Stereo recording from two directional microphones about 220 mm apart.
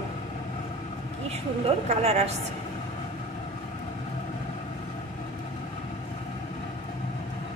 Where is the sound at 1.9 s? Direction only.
30° right (ahead or behind).